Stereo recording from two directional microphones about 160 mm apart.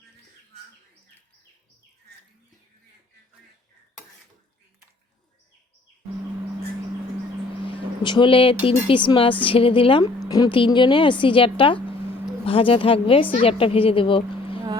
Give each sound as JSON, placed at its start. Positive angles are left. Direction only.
{"t": 7.6, "sound": "a woman's voice", "side_deg": 30}